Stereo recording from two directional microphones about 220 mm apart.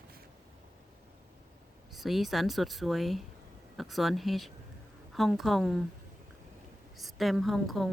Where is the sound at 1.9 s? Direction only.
Centre (ahead or behind).